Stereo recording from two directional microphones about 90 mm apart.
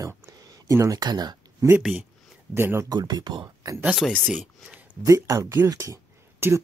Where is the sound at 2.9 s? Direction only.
50° right (ahead or behind).